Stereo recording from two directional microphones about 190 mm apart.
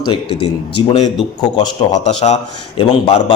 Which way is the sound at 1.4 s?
20° left (ahead or behind).